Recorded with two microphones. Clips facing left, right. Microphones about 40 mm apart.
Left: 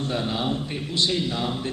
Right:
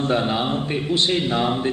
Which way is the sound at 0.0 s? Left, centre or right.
Right.